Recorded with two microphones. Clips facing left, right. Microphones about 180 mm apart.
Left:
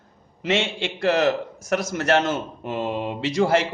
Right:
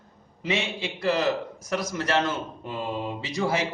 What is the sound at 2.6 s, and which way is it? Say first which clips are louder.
Speech: left 5 dB; 80° left.